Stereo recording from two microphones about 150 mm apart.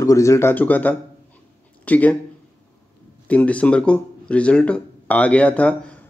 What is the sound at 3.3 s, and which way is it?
Speech, 10° left (ahead or behind).